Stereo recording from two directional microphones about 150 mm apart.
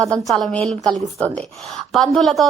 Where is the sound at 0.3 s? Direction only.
5° left (ahead or behind).